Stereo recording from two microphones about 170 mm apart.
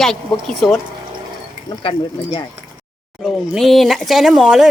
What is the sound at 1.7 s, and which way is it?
Speech, 30° left (ahead or behind).